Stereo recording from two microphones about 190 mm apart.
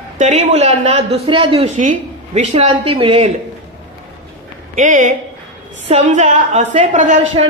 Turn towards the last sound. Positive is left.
turn(degrees=-40)  # may be behind; listen again after turning